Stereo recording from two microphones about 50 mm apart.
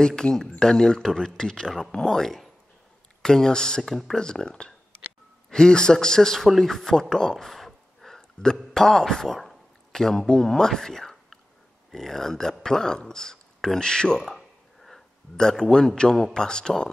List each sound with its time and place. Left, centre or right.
0.0 s speech: centre
3.9 s speech: centre
4.2 s speech: centre
6.5 s a sound: centre
10.0 s speech: centre
12.6 s a sound: centre
15.3 s speech: centre